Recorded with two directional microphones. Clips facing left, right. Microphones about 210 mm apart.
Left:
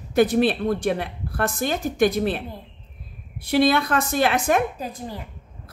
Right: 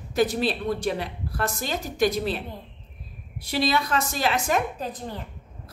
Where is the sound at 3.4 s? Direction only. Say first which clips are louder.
Left 6 dB; 55° left (ahead or behind).